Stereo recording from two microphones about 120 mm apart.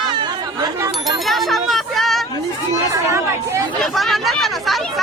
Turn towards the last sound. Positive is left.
turn(degrees=0)  # may be behind; listen again after turning